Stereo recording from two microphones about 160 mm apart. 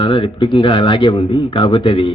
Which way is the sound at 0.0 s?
30° left (ahead or behind).